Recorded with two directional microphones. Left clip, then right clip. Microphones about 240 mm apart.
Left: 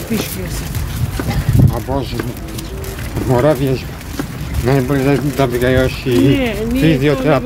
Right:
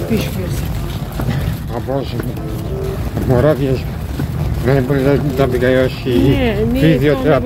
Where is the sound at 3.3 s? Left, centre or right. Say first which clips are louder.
Even; centre.